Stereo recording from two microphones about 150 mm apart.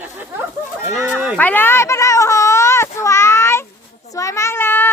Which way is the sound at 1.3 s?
10° left (ahead or behind).